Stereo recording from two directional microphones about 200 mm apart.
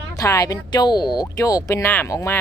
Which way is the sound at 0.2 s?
15° left (ahead or behind).